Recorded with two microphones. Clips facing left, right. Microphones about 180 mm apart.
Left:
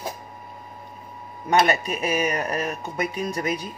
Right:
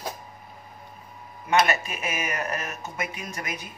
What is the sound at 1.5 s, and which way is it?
Speech, 35° left (ahead or behind).